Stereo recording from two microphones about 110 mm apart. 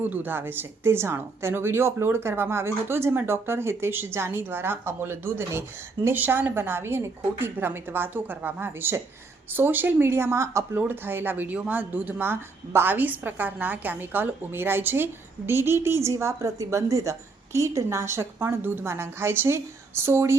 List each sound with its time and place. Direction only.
0.0 s speech: 15° right (ahead or behind)